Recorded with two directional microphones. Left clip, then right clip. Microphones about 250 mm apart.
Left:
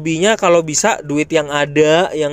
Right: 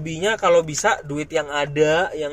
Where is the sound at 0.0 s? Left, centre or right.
Left.